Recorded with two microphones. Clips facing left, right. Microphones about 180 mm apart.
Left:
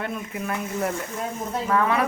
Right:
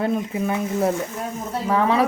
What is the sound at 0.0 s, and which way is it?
Speech, 30° right (ahead or behind).